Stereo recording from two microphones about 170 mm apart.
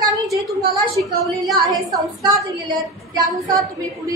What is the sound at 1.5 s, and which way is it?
Speech, centre (ahead or behind).